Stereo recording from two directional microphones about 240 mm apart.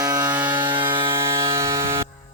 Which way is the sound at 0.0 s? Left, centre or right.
Centre.